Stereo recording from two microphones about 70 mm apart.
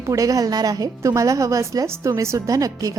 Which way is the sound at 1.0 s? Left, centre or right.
Right.